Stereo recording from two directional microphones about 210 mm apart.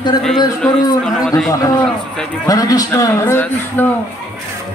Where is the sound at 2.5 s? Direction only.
15° left (ahead or behind).